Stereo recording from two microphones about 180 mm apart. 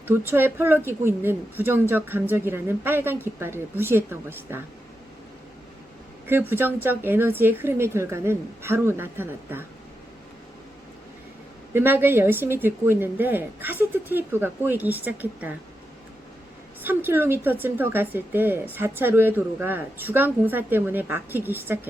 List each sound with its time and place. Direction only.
0.1 s speech: 10° right (ahead or behind)
6.2 s speech: 10° right (ahead or behind)
11.7 s speech: 10° right (ahead or behind)
16.8 s speech: 10° right (ahead or behind)